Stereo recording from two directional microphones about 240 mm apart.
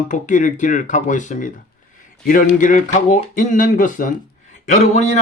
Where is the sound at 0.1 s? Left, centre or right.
Left.